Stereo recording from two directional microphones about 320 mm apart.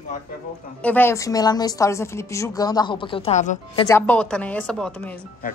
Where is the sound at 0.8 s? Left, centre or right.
Centre; by 3.8 s left.